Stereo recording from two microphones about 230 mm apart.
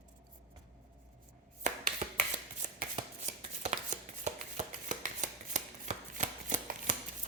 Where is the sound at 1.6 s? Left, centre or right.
Right.